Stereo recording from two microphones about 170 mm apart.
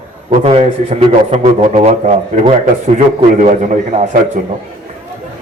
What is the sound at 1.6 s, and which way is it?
A man's voice, 40° right (ahead or behind).